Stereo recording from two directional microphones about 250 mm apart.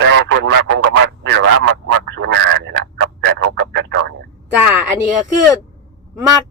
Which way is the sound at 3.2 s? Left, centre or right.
Right.